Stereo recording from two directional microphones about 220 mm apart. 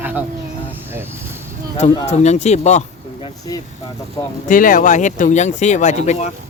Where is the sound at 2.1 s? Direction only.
30° left (ahead or behind).